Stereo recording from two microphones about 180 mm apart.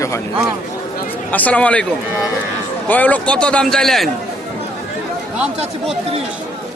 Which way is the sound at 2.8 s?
10° left (ahead or behind).